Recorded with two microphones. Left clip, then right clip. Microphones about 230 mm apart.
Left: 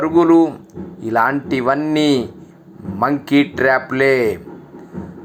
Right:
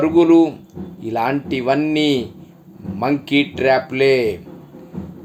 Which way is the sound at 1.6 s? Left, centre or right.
Centre.